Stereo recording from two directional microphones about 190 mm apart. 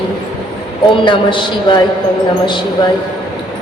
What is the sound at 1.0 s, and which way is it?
Speech, 25° left (ahead or behind).